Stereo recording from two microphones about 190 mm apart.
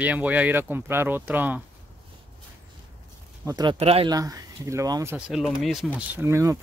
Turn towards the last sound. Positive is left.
turn(degrees=-15)  # may be behind; listen again after turning